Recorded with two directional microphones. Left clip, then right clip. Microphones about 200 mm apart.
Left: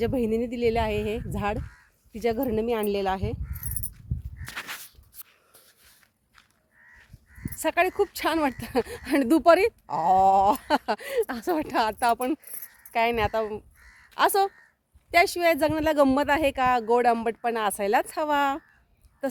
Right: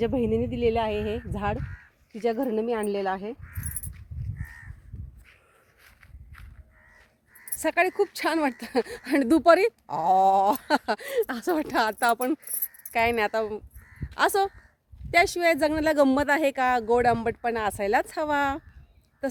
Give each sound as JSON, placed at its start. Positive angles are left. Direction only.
{"t": 0.0, "sound": "speech", "side_deg": -15}
{"t": 7.6, "sound": "speech", "side_deg": 0}